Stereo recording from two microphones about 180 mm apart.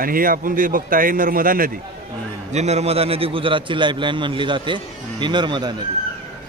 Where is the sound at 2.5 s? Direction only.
35° right (ahead or behind).